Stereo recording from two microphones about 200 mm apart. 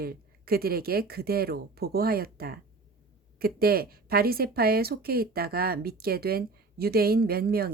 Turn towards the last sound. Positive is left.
turn(degrees=-50)  # may be behind; listen again after turning